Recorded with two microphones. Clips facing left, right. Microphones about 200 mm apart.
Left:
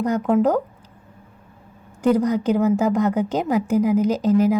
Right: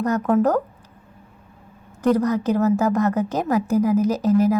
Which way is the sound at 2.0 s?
15° left (ahead or behind).